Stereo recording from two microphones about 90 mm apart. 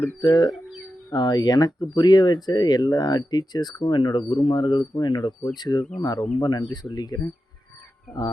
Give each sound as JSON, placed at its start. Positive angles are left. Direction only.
{"t": 0.2, "sound": "speech", "side_deg": 50}